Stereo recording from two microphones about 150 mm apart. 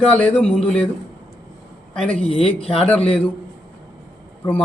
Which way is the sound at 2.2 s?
40° left (ahead or behind).